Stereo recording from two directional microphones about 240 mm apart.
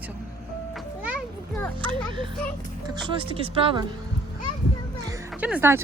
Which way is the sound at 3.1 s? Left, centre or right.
Right.